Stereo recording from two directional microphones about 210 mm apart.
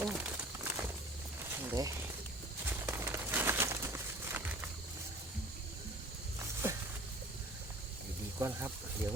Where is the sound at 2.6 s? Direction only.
10° right (ahead or behind).